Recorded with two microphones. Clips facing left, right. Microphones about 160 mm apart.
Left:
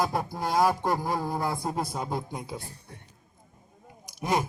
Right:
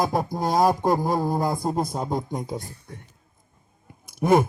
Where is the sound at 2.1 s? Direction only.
40° right (ahead or behind).